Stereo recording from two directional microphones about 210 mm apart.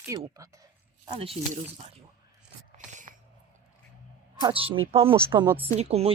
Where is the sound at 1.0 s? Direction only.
25° right (ahead or behind).